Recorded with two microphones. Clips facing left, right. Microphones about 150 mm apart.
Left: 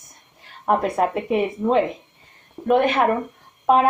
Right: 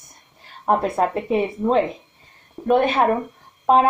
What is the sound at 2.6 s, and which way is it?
Speech, 10° right (ahead or behind).